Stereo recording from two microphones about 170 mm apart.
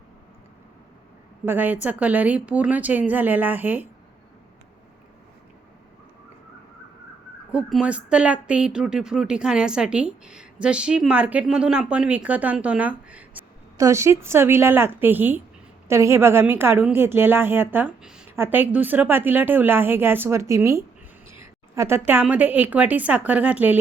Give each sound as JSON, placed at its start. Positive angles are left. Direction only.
{"t": 1.5, "sound": "a woman's voice", "side_deg": -10}
{"t": 7.5, "sound": "a woman's voice", "side_deg": -5}